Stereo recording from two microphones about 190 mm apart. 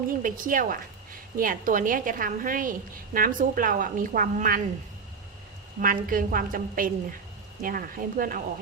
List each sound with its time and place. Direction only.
0.2 s a woman's voice: 45° right (ahead or behind)
5.8 s a woman's voice: 45° right (ahead or behind)